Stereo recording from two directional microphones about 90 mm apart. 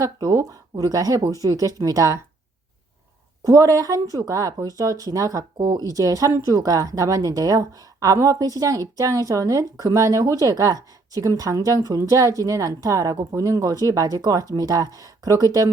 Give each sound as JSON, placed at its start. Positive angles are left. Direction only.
{"t": 0.0, "sound": "a woman's voice", "side_deg": -45}
{"t": 3.4, "sound": "a woman's voice", "side_deg": -40}
{"t": 5.5, "sound": "a woman's voice", "side_deg": -50}